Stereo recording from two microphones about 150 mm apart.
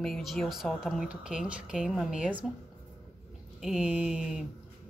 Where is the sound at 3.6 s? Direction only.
5° right (ahead or behind).